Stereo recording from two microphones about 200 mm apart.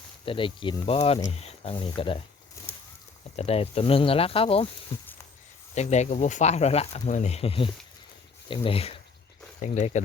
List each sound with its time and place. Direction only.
0.3 s speech: 25° left (ahead or behind)
3.3 s speech: 30° left (ahead or behind)
5.7 s speech: 35° left (ahead or behind)